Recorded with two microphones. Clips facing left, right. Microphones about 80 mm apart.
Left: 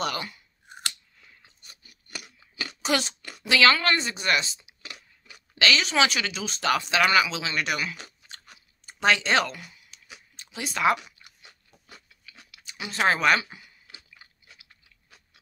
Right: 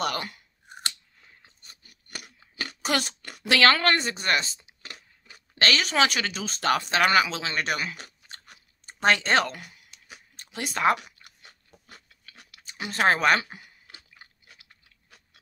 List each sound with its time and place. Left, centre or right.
0.0 s speech: right
1.2 s chewing: right